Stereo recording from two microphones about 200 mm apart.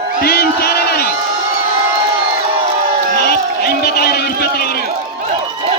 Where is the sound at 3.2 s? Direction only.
50° left (ahead or behind).